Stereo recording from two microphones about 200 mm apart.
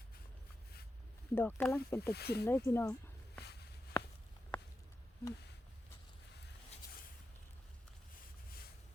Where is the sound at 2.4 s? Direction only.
15° left (ahead or behind).